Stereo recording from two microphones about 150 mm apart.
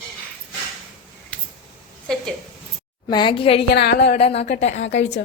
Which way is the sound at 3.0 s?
30° left (ahead or behind).